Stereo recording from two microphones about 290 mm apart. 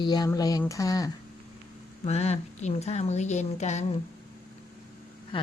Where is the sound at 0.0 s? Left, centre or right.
Centre.